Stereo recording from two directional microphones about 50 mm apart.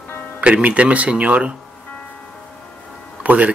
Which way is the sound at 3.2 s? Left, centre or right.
Right.